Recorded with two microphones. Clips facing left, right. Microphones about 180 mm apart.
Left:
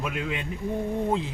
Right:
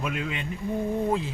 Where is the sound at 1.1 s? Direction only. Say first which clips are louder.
Even; 20° left (ahead or behind).